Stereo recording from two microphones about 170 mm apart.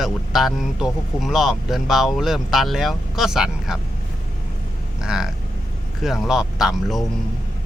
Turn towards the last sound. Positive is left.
turn(degrees=0)  # may be behind; listen again after turning